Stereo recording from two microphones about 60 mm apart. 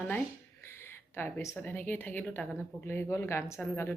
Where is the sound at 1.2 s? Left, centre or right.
Left.